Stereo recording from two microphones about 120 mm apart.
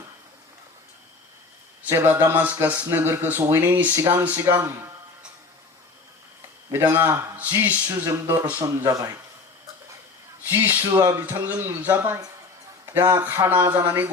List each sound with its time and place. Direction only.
1.9 s speech: 15° right (ahead or behind)
6.7 s speech: 20° right (ahead or behind)
10.5 s speech: 15° right (ahead or behind)